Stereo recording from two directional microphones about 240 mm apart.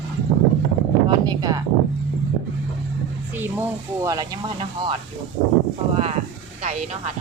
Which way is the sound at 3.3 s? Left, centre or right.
Centre.